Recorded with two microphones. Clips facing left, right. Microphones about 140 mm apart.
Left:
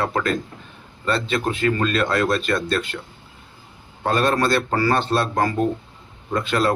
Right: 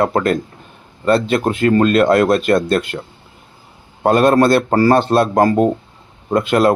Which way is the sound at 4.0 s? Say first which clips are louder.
Right 8 dB; 45° right (ahead or behind).